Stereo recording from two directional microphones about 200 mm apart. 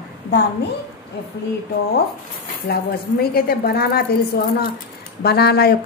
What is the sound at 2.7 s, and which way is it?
A woman's voice, 50° left (ahead or behind).